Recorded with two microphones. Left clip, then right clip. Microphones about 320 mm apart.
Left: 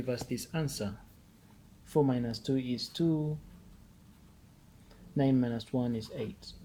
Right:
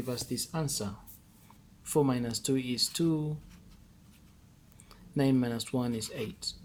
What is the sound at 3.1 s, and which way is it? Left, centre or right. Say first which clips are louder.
Speech: even; right.